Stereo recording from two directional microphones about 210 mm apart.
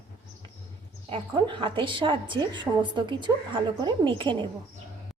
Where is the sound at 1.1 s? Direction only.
20° right (ahead or behind).